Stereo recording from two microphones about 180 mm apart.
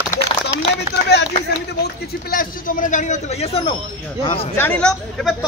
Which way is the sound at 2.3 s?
45° left (ahead or behind).